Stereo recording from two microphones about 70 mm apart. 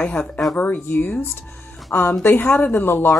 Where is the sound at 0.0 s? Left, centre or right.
Left.